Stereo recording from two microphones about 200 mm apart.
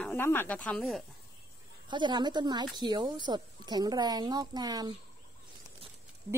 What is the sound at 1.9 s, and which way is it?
A woman's voice, 20° right (ahead or behind).